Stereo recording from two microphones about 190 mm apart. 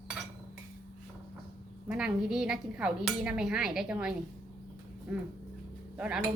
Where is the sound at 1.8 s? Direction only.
5° right (ahead or behind).